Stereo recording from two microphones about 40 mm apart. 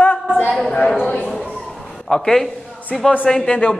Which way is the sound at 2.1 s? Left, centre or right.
Centre.